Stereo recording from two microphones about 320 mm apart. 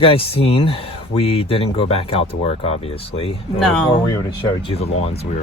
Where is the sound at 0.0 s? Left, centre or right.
Centre.